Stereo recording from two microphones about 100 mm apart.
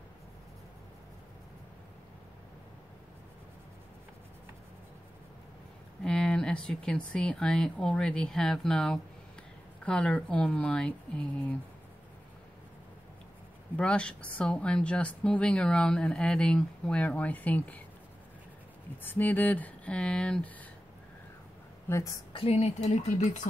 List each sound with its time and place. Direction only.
6.0 s speech: 5° left (ahead or behind)
13.7 s speech: 10° left (ahead or behind)
19.0 s speech: 20° left (ahead or behind)
21.8 s a woman's voice: 30° left (ahead or behind)
22.3 s speech: 80° left